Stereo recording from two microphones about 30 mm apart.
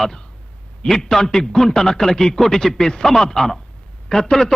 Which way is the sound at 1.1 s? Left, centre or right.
Centre.